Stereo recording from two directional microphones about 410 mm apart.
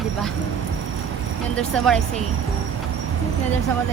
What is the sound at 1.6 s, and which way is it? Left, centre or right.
Speech, centre.